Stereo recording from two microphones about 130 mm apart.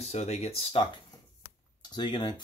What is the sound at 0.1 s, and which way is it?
Speech, 55° left (ahead or behind).